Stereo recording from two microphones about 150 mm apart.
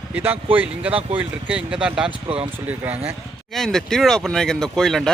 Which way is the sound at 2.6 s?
10° right (ahead or behind).